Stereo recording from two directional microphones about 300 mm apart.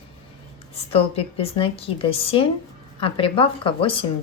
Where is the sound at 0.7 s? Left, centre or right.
Centre.